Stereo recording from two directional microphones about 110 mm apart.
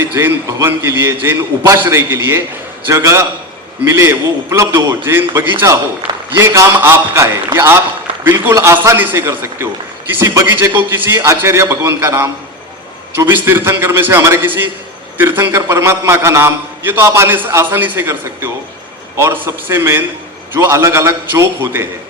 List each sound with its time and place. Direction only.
0.0 s a man's voice: 20° right (ahead or behind)